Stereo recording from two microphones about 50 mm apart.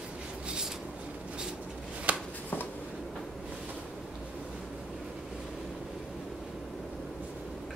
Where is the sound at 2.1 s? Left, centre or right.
Right.